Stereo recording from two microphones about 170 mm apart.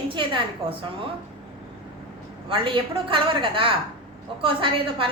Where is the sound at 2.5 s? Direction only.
30° right (ahead or behind).